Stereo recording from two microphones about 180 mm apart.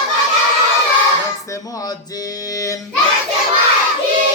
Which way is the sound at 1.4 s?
20° left (ahead or behind).